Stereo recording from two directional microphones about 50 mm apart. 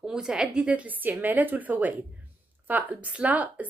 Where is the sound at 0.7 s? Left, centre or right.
Right.